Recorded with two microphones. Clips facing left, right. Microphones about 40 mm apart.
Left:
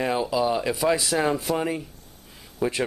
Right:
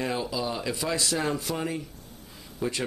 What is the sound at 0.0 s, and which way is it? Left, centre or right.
Speech, centre.